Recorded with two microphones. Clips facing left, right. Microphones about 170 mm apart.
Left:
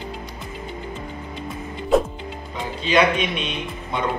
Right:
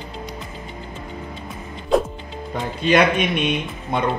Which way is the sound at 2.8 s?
55° right (ahead or behind).